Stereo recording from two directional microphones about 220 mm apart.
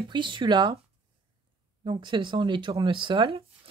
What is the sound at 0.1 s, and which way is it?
Speech, 20° right (ahead or behind).